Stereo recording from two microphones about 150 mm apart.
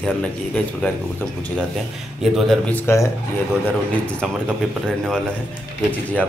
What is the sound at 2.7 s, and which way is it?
Speech, 15° left (ahead or behind).